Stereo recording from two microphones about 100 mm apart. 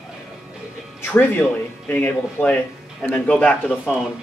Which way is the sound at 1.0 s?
15° left (ahead or behind).